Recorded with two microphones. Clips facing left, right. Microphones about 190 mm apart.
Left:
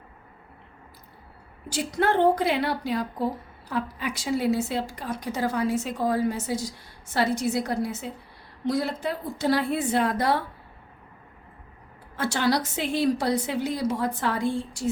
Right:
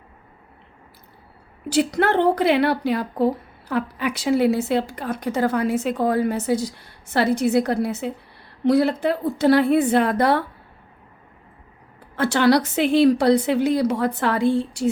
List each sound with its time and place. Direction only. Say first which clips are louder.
1.7 s speech: right 5 dB; 70° right (ahead or behind)
12.1 s speech: right 7 dB; 65° right (ahead or behind)